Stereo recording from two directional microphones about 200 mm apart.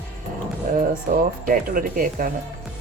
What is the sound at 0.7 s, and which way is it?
Speech, 45° right (ahead or behind).